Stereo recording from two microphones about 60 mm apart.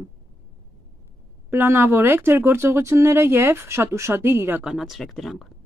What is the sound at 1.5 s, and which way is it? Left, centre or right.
Speech, right.